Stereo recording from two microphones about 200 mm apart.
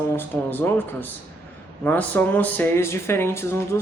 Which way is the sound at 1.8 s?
10° left (ahead or behind).